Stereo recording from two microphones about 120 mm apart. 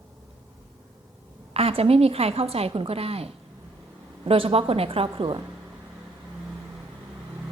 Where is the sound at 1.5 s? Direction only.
55° right (ahead or behind).